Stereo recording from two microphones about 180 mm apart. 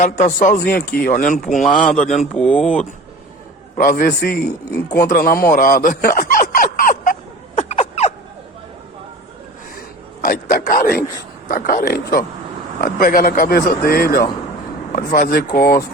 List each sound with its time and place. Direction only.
0.0 s a man's voice: 40° left (ahead or behind)
2.4 s speech: 5° left (ahead or behind)
3.8 s a man's voice: 45° left (ahead or behind)
4.9 s a sound: 55° left (ahead or behind); by 8.1 s 40° left (ahead or behind)
9.7 s a sound: 50° left (ahead or behind)
11.4 s a man's voice: 50° left (ahead or behind)